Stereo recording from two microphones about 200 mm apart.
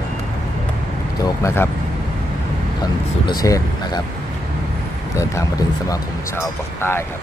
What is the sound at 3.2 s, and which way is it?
Speech, 20° left (ahead or behind).